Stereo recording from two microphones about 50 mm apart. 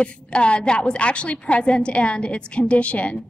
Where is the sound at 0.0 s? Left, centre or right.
Left.